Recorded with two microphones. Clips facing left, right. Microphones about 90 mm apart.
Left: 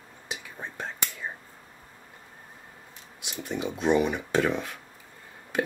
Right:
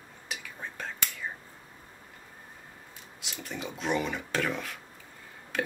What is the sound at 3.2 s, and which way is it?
Speech, 20° left (ahead or behind).